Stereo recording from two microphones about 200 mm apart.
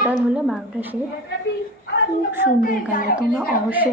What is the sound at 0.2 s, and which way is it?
Speech, 5° right (ahead or behind).